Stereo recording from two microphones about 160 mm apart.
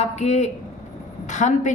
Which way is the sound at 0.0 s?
45° left (ahead or behind).